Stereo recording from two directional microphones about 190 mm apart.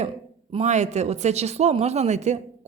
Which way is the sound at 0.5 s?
35° right (ahead or behind).